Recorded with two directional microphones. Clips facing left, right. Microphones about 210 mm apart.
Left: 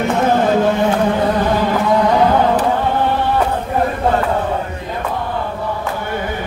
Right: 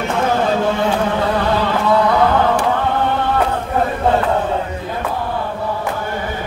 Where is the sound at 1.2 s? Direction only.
15° left (ahead or behind).